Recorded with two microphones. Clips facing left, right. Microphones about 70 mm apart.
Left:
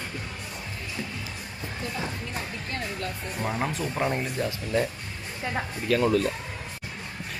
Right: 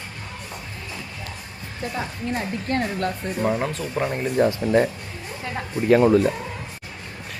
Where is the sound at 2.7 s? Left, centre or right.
Right.